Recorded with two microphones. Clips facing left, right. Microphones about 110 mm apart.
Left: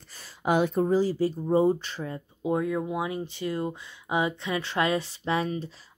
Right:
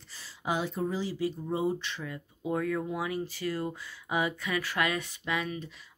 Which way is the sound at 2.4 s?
20° left (ahead or behind).